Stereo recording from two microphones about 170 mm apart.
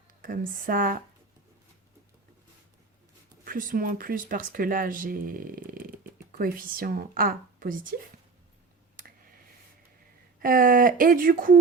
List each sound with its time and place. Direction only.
0.2 s speech: 55° right (ahead or behind)
3.4 s speech: 55° right (ahead or behind)
10.4 s speech: 55° right (ahead or behind)